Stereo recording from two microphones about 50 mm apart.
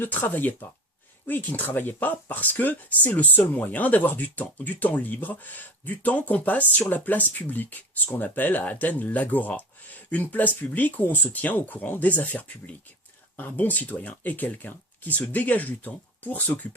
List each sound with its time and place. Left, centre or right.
0.0 s speech: left